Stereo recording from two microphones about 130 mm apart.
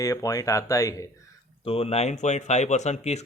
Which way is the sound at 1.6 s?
50° left (ahead or behind).